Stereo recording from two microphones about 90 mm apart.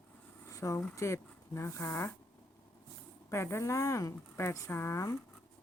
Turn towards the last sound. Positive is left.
turn(degrees=30)  # may be behind; listen again after turning